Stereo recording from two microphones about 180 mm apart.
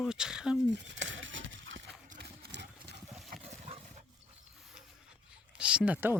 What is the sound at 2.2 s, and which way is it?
Horse, 70° right (ahead or behind).